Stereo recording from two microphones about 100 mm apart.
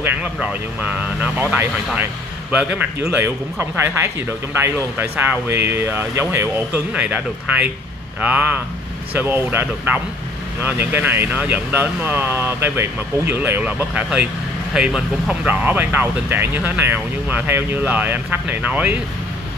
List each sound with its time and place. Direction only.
0.0 s speech: 15° right (ahead or behind)
2.5 s speech: 15° right (ahead or behind)
6.7 s speech: 15° right (ahead or behind)
15.4 s speech: 15° right (ahead or behind)